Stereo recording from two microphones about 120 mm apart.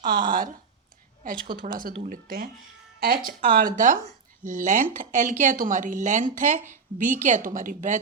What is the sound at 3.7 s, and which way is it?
Speech, 90° right.